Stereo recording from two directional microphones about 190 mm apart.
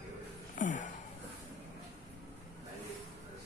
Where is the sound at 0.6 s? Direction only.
40° left (ahead or behind).